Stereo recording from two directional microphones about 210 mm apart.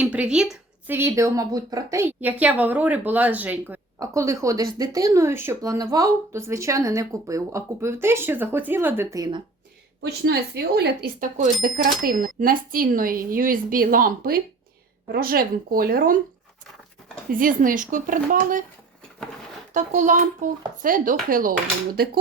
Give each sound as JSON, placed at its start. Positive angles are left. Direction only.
{"t": 0.0, "sound": "speech", "side_deg": -5}
{"t": 10.0, "sound": "speech", "side_deg": -50}
{"t": 17.3, "sound": "a child's voice", "side_deg": -40}
{"t": 19.7, "sound": "a child's voice", "side_deg": -35}